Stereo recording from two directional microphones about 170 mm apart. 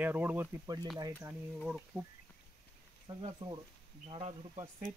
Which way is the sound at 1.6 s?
5° right (ahead or behind).